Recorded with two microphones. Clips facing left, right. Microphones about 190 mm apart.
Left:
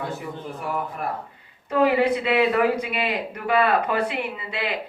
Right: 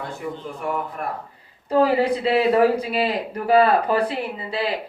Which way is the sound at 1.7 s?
35° right (ahead or behind).